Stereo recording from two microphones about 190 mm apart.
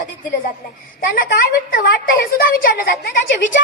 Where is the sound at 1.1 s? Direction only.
50° left (ahead or behind).